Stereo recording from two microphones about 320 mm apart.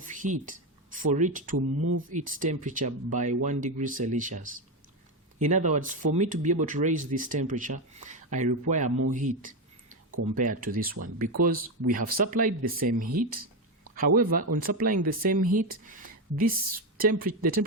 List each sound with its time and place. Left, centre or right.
0.0 s speech: right
1.5 s speech: right
2.0 s speech: right
10.3 s speech: right
13.1 s speech: right
14.2 s speech: right